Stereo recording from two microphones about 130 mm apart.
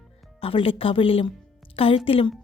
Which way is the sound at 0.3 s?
45° left (ahead or behind).